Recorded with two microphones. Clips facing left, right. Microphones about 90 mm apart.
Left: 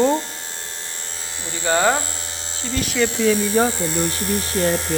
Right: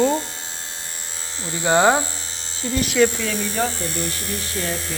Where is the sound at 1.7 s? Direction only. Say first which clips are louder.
Right 2 dB; 20° right (ahead or behind).